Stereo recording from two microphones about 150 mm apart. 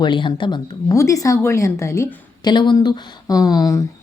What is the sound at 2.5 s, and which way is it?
A woman's voice, 30° left (ahead or behind).